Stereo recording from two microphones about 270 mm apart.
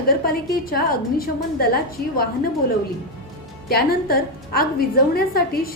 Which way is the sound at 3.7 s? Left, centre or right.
Left.